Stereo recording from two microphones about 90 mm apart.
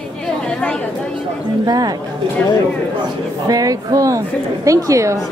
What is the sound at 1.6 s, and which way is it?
Speech, 45° right (ahead or behind).